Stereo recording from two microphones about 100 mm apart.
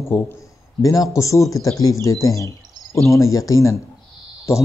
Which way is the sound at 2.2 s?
35° left (ahead or behind).